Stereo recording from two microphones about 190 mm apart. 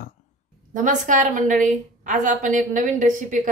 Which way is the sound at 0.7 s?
40° right (ahead or behind).